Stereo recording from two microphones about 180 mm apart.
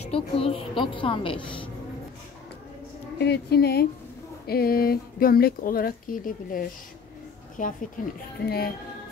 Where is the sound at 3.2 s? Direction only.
65° left (ahead or behind); by 7.7 s 45° left (ahead or behind).